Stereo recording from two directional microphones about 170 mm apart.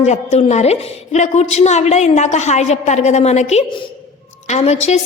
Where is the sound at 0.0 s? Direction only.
40° left (ahead or behind).